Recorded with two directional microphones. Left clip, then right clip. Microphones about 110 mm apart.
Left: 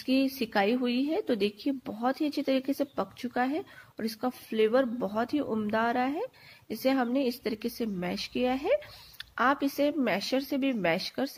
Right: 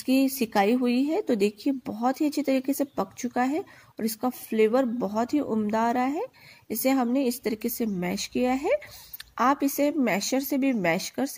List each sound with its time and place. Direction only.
0.0 s speech: 45° right (ahead or behind)